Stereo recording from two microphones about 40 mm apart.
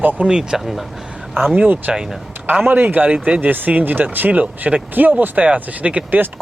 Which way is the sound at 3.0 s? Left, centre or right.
Right.